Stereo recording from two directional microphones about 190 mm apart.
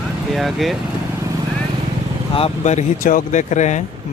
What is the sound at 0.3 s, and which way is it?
Speech, centre (ahead or behind).